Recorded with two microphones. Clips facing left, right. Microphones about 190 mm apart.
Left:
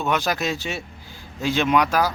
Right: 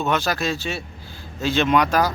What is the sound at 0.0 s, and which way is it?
Speech, 15° left (ahead or behind).